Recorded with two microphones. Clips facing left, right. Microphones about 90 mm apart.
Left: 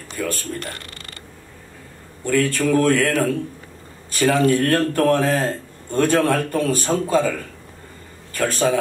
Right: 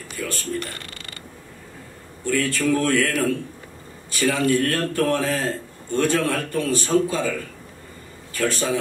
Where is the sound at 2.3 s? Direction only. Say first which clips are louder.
Left 3 dB; 50° left (ahead or behind).